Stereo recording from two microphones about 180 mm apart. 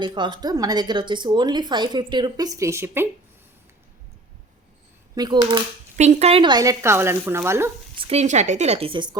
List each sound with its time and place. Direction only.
0.0 s speech: 25° right (ahead or behind)
5.1 s speech: 25° right (ahead or behind)
6.0 s speech: 40° right (ahead or behind); by 7.7 s 15° right (ahead or behind)
7.9 s a woman's voice: 35° right (ahead or behind)